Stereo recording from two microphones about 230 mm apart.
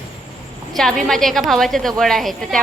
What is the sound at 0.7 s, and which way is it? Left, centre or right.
A woman's voice, centre.